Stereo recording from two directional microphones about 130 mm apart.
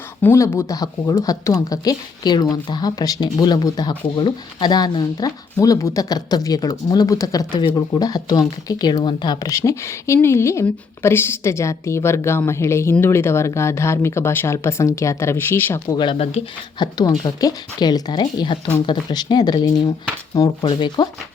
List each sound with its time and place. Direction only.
0.2 s speech: 20° left (ahead or behind)
16.0 s speech: 40° left (ahead or behind)
20.7 s speech: 35° left (ahead or behind)